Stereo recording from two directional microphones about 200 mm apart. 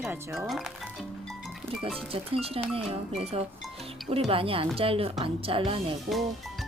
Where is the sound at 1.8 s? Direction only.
30° right (ahead or behind).